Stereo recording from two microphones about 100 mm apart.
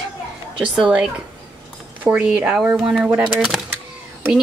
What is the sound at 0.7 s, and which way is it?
Speech, 5° right (ahead or behind).